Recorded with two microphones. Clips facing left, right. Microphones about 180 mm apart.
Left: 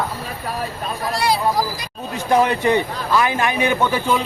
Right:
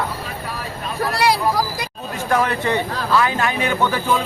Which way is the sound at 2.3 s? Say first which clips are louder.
Left 3 dB; 20° left (ahead or behind).